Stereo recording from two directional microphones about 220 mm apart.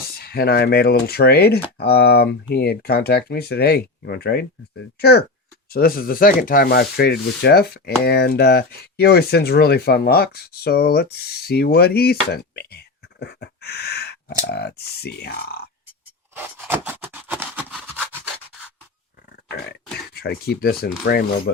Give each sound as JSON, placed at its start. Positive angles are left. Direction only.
{"t": 0.1, "sound": "speech", "side_deg": 45}
{"t": 16.4, "sound": "scratch", "side_deg": -10}
{"t": 20.1, "sound": "speech", "side_deg": 45}